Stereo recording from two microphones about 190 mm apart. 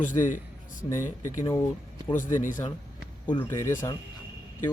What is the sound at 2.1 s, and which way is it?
Speech, 40° left (ahead or behind).